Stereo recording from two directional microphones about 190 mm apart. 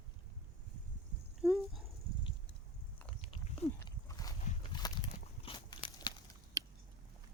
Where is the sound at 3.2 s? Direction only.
30° left (ahead or behind).